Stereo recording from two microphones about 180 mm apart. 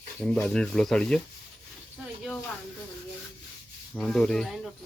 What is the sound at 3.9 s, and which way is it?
Speech, 5° left (ahead or behind).